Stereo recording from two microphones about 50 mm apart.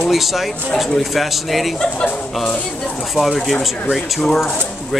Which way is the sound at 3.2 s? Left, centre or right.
Right.